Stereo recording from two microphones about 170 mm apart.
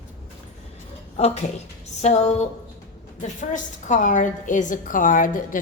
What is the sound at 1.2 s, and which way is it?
A woman's voice, 40° left (ahead or behind).